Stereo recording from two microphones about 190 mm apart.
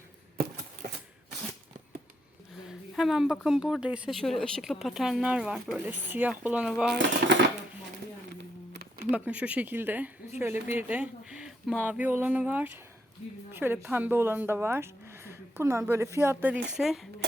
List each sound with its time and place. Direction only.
2.6 s speech: centre (ahead or behind)
7.2 s speech: 55° right (ahead or behind)
8.4 s a sound: 60° right (ahead or behind)
9.0 s speech: 5° right (ahead or behind)